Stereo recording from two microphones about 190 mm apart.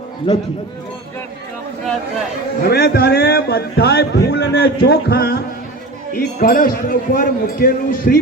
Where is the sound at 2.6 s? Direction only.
55° left (ahead or behind).